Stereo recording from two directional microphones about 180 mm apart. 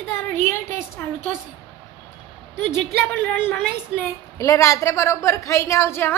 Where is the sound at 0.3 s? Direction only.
15° left (ahead or behind).